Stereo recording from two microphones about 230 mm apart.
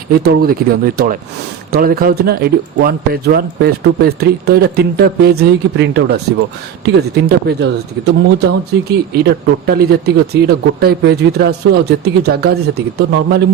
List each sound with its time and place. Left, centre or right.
0.2 s speech: right